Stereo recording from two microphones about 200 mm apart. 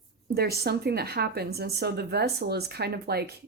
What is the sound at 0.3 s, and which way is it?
A woman's voice, 50° right (ahead or behind).